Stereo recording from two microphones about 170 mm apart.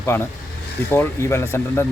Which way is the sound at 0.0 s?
15° left (ahead or behind).